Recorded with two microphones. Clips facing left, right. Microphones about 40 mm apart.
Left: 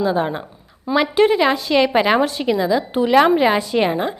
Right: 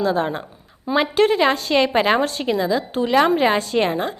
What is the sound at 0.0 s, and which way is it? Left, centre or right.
A woman's voice, centre.